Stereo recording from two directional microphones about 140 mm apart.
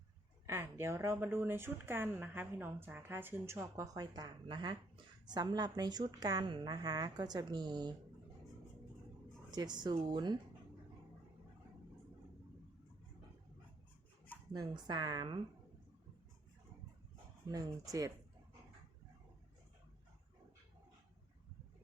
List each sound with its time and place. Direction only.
0.4 s a woman's voice: 20° right (ahead or behind)
9.5 s a woman's voice: 30° right (ahead or behind)
14.5 s a woman's voice: 30° right (ahead or behind)
17.5 s a woman's voice: 25° right (ahead or behind)